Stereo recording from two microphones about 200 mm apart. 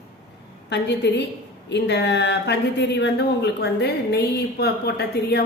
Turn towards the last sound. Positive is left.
turn(degrees=55)  # may be behind; listen again after turning